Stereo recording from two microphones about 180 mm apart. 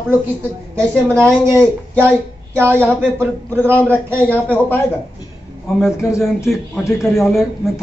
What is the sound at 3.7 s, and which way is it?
A woman's voice, 10° left (ahead or behind).